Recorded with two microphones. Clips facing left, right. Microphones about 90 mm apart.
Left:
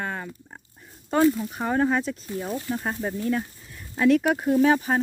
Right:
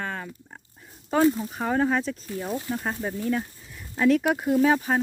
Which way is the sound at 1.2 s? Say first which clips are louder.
Left 1 dB; 20° right (ahead or behind).